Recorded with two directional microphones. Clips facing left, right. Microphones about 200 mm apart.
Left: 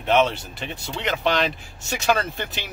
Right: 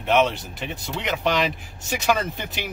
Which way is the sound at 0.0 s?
10° right (ahead or behind).